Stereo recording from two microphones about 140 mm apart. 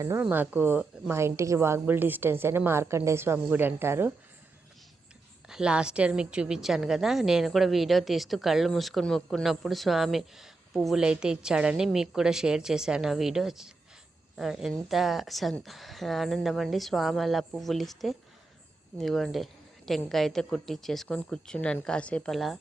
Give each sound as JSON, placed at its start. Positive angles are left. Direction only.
{"t": 0.0, "sound": "a woman's voice", "side_deg": -15}
{"t": 5.5, "sound": "a woman's voice", "side_deg": -5}